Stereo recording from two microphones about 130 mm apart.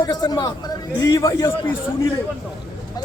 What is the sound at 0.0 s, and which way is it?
A man's voice, 30° left (ahead or behind).